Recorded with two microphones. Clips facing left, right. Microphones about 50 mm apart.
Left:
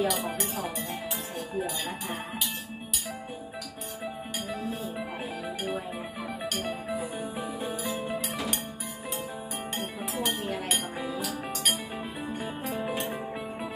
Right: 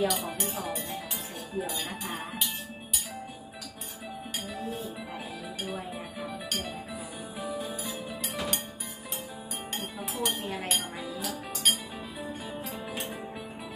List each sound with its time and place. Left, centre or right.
0.0 s speech: centre
7.3 s music: left
10.2 s chink: centre
11.1 s music: centre